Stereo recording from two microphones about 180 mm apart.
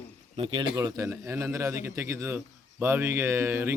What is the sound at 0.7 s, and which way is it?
A man's voice, 20° right (ahead or behind).